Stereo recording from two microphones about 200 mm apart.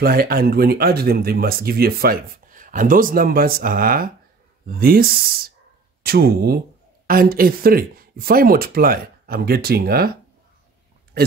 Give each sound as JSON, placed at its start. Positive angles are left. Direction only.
{"t": 0.0, "sound": "speech", "side_deg": -50}